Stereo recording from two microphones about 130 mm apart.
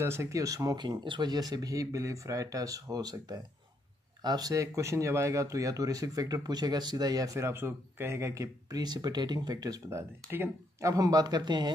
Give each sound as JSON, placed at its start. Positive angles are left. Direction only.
{"t": 0.0, "sound": "speech", "side_deg": -20}